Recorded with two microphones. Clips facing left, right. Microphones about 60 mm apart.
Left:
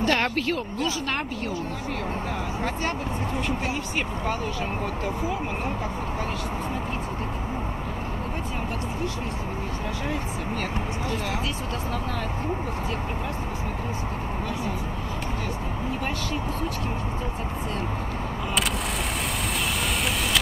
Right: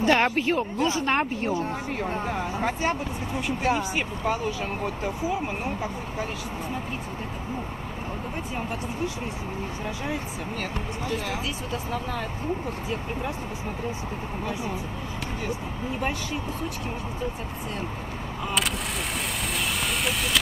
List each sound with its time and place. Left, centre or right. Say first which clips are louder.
0.0 s speech: right 2 dB; centre
2.6 s speech: right 3 dB; centre